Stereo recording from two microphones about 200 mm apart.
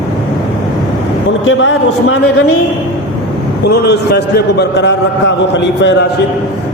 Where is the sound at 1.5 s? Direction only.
80° left.